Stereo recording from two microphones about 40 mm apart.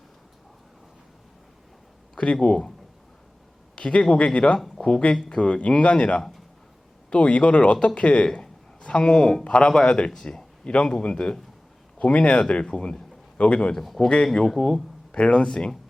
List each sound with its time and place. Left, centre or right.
2.1 s speech: left
3.8 s speech: left
8.4 s a sound: left
9.4 s speech: left
10.2 s a sound: left
11.0 s speech: left
12.7 s a man's voice: centre
13.4 s a man's voice: left; by 14.7 s centre
15.1 s speech: left